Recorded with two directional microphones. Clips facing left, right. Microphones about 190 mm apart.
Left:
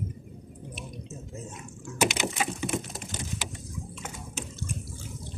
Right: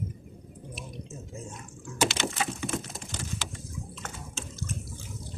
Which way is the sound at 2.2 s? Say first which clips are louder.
Left 1 dB; 15° left (ahead or behind).